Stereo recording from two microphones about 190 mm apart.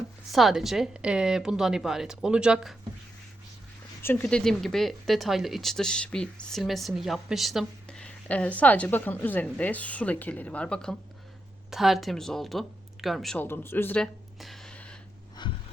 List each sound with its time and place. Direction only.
0.3 s speech: centre (ahead or behind)
4.0 s speech: 10° left (ahead or behind)
15.4 s gasp: 25° left (ahead or behind)